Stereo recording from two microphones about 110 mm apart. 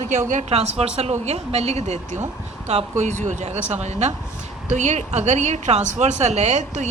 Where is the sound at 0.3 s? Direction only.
75° right (ahead or behind).